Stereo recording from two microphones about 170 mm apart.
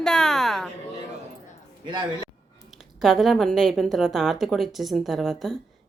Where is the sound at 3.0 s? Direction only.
Centre (ahead or behind).